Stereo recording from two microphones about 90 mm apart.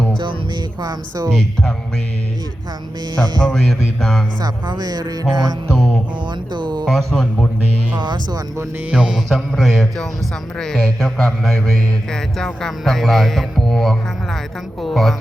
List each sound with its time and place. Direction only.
0.8 s speech: 45° right (ahead or behind)
1.3 s speech: 5° left (ahead or behind)
3.4 s speech: 5° left (ahead or behind)
4.4 s speech: 55° right (ahead or behind)
5.7 s music: 5° left (ahead or behind)
6.5 s speech: 55° right (ahead or behind)
6.8 s speech: 5° left (ahead or behind)
7.9 s speech: 55° right (ahead or behind)
8.9 s music: 10° right (ahead or behind)
9.3 s a woman's voice: centre (ahead or behind)